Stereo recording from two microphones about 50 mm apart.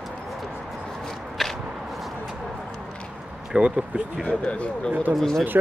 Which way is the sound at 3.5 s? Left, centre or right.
Centre.